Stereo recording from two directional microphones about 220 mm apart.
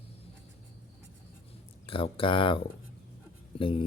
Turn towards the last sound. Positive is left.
turn(degrees=25)  # may be behind; listen again after turning